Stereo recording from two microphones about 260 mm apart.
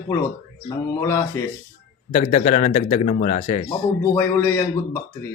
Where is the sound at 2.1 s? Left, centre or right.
Left.